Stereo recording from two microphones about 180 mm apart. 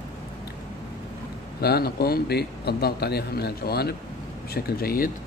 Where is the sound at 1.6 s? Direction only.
60° left (ahead or behind).